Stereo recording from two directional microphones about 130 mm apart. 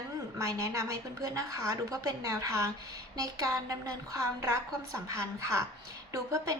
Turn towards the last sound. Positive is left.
turn(degrees=-25)  # may be behind; listen again after turning